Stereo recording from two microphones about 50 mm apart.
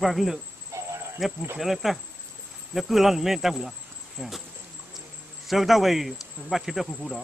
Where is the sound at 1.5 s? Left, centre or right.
Centre.